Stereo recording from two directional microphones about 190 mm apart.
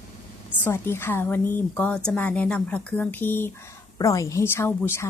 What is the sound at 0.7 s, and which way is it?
A woman's voice, 10° left (ahead or behind).